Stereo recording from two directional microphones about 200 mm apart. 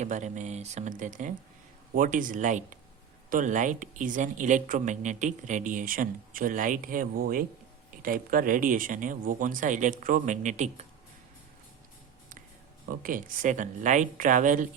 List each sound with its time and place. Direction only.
0.0 s speech: 35° right (ahead or behind)
12.8 s speech: 45° right (ahead or behind)